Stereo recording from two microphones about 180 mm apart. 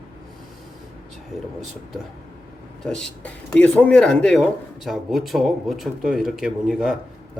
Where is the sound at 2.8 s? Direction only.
5° left (ahead or behind).